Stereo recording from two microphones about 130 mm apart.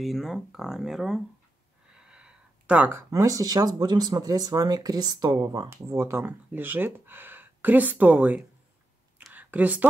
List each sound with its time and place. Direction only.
0.0 s speech: centre (ahead or behind); by 5.7 s 35° right (ahead or behind)
5.7 s speech: 20° right (ahead or behind)
9.3 s a sound: 10° right (ahead or behind)